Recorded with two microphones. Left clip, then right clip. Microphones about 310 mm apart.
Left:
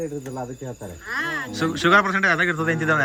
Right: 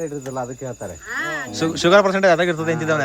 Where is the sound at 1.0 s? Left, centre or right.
Centre.